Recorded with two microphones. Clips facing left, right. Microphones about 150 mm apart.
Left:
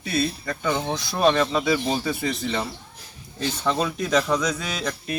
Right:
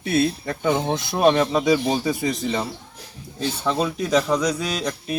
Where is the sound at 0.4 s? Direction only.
25° right (ahead or behind).